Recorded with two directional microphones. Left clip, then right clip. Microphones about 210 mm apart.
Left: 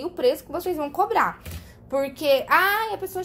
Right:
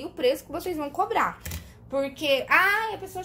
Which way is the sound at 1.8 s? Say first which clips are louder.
Left 4 dB; 25° left (ahead or behind).